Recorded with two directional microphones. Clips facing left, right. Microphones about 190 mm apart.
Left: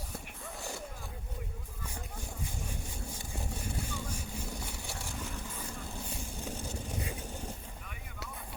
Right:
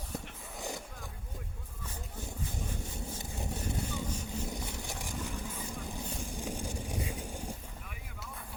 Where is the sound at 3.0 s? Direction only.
20° right (ahead or behind).